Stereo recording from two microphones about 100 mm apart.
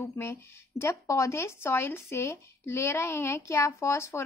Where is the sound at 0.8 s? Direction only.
30° left (ahead or behind).